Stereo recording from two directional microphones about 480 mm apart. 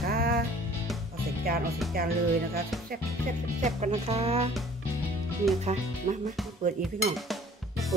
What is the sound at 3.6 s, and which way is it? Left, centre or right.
Speech, centre.